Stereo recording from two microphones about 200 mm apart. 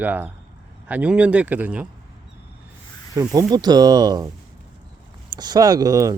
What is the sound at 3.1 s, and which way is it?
Speech, 20° right (ahead or behind).